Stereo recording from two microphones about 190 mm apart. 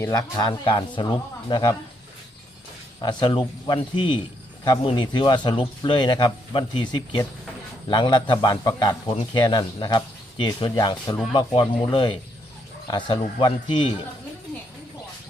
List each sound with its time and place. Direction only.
0.0 s a man's voice: 20° left (ahead or behind)
3.0 s a man's voice: 25° left (ahead or behind)